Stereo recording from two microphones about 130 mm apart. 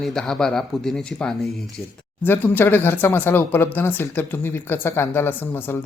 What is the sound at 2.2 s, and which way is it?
Speech, 15° left (ahead or behind).